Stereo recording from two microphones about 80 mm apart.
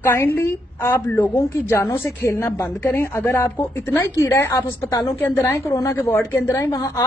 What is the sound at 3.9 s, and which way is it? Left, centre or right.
A woman's voice, left.